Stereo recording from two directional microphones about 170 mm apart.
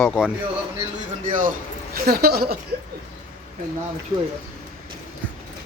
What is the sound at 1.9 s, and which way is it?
Speech, 65° right (ahead or behind).